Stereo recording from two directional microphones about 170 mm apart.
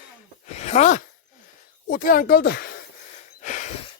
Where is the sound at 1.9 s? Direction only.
60° left (ahead or behind).